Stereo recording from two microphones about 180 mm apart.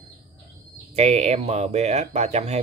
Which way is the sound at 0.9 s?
35° right (ahead or behind).